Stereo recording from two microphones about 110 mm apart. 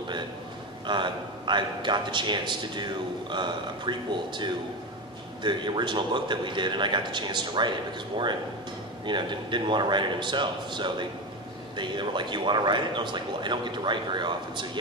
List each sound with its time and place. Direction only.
0.8 s a man's voice: 45° right (ahead or behind)
9.0 s a man's voice: 45° right (ahead or behind)